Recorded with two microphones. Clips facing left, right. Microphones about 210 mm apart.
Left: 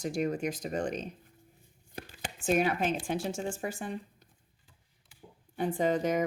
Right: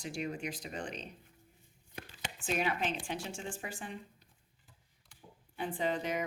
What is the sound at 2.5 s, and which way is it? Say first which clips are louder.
A woman's voice: left 6 dB; 45° left (ahead or behind).